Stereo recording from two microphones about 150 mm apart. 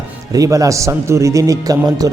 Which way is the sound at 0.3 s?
20° right (ahead or behind).